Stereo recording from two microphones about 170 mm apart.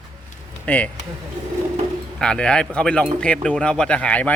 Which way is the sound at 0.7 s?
5° left (ahead or behind).